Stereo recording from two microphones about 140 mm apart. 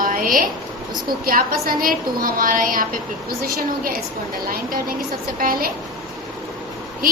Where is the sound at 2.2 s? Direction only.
80° right.